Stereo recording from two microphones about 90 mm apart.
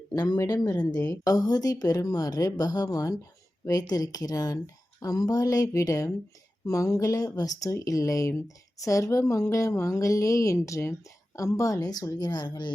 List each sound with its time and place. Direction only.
0.1 s speech: 45° left (ahead or behind)